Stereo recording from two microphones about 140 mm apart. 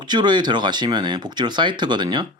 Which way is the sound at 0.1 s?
30° right (ahead or behind).